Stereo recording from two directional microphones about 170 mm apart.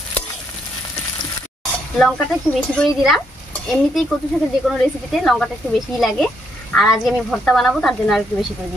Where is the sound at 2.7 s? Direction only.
Centre (ahead or behind).